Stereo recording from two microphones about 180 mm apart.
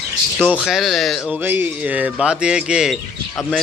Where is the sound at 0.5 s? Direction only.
Centre (ahead or behind).